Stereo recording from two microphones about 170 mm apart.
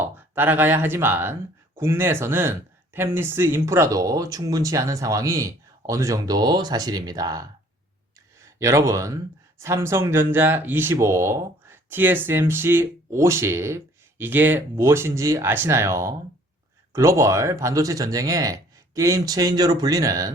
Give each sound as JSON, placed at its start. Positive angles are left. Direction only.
{"t": 0.0, "sound": "speech", "side_deg": -10}
{"t": 8.5, "sound": "speech", "side_deg": -20}